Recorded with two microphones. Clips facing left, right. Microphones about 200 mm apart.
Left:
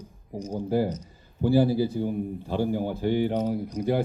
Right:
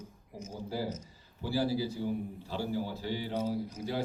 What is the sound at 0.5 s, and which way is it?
Speech, 55° left (ahead or behind).